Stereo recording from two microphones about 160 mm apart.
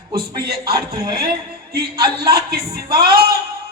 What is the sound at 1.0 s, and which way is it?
A man's voice, 30° right (ahead or behind).